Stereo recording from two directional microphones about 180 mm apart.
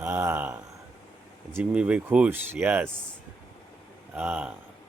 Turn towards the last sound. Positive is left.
turn(degrees=-5)  # may be behind; listen again after turning